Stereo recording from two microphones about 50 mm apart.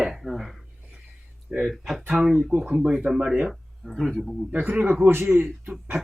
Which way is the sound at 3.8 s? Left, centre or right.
Centre.